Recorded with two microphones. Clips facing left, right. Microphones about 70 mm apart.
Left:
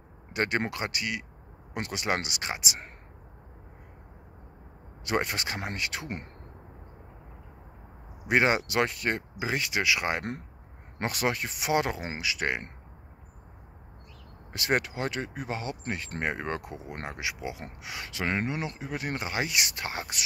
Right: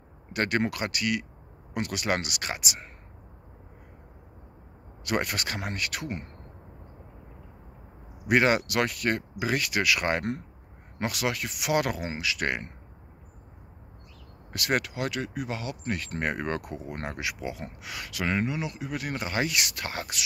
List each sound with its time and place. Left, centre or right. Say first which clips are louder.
0.3 s speech: right 2 dB; left
5.0 s speech: even; left
8.3 s speech: right 2 dB; left
11.0 s speech: even; left; by 12.6 s centre
14.5 s speech: even; left
19.2 s speech: right 3 dB; centre